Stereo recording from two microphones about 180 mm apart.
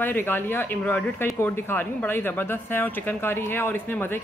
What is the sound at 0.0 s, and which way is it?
A woman's voice, 10° left (ahead or behind).